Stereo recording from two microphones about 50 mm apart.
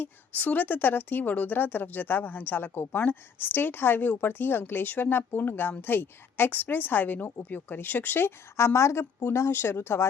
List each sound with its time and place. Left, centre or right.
0.0 s speech: left
8.5 s a woman's voice: left
9.5 s speech: left